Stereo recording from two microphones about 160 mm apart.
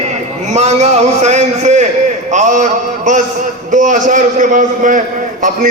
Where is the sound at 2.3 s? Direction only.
50° right (ahead or behind).